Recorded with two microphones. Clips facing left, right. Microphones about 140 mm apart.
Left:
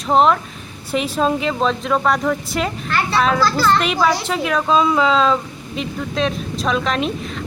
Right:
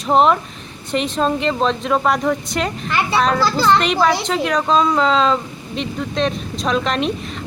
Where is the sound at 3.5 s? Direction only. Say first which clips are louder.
Right 2 dB; 20° right (ahead or behind).